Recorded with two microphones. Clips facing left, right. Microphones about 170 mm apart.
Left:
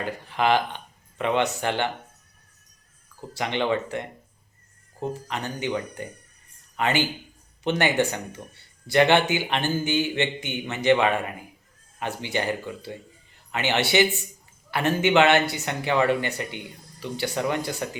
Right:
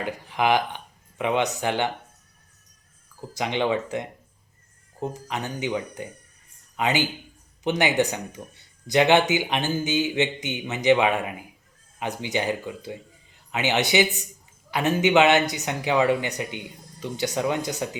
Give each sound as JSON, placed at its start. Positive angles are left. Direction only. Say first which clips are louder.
{"t": 0.0, "sound": "speech", "louder": "even", "side_deg": -15}
{"t": 3.2, "sound": "speech", "louder": "right 1 dB", "side_deg": -15}